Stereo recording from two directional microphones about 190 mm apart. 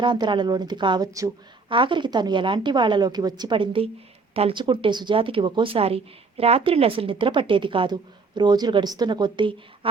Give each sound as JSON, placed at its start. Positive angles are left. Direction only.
{"t": 0.0, "sound": "speech", "side_deg": -25}